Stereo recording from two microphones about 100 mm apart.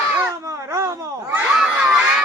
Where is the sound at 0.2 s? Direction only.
30° right (ahead or behind).